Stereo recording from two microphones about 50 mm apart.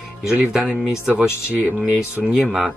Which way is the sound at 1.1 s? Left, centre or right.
Left.